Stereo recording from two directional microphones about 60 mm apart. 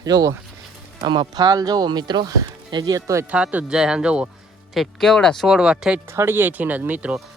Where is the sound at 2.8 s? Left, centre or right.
Right.